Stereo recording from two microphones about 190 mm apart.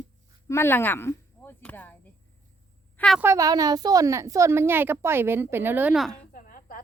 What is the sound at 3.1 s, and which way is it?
A woman's voice, 15° right (ahead or behind).